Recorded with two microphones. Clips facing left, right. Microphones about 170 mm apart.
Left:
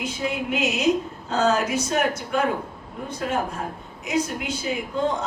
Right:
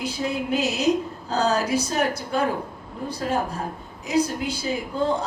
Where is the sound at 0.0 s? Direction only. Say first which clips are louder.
Right 1 dB; 35° right (ahead or behind).